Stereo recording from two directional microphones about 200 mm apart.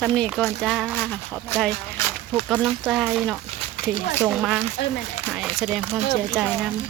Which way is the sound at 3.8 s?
45° left (ahead or behind).